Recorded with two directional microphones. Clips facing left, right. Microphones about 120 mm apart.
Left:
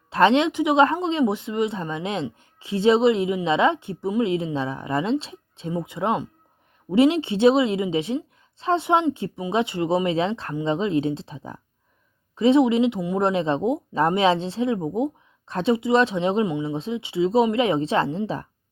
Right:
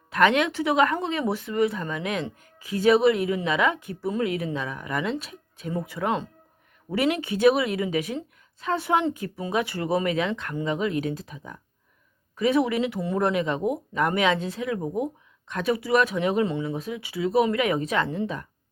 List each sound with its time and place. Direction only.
0.1 s a woman's voice: 30° left (ahead or behind)